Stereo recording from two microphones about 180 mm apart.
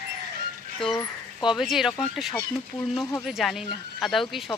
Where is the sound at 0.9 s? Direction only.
25° left (ahead or behind).